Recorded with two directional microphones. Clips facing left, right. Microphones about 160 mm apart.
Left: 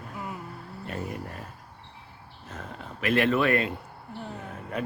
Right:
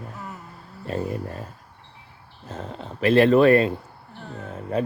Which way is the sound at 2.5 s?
30° right (ahead or behind).